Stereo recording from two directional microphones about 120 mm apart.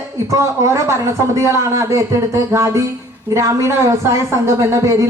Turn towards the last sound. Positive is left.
turn(degrees=-25)  # may be behind; listen again after turning